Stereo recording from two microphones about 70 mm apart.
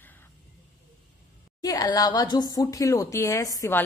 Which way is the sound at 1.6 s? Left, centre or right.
Left.